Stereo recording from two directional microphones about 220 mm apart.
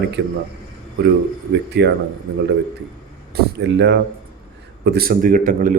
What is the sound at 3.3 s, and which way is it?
Speech, 50° right (ahead or behind).